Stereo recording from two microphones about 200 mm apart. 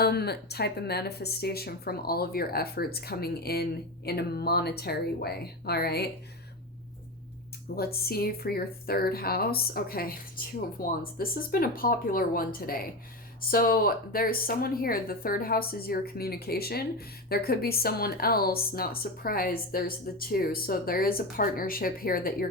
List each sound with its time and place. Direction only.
0.0 s speech: 55° left (ahead or behind)
7.8 s speech: 50° left (ahead or behind)